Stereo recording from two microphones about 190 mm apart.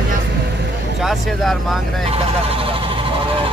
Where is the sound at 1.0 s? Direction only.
Centre (ahead or behind).